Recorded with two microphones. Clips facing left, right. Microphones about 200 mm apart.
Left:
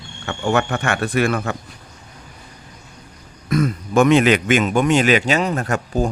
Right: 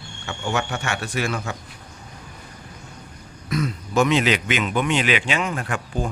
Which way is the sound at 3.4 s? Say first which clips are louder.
Left 6 dB; 50° left (ahead or behind).